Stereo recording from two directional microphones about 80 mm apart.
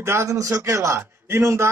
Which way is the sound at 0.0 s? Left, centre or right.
Right.